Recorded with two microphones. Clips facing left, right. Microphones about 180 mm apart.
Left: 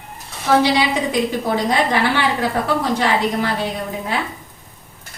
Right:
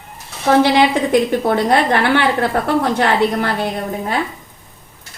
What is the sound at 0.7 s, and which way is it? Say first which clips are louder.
A woman's voice: right 5 dB; 60° right (ahead or behind).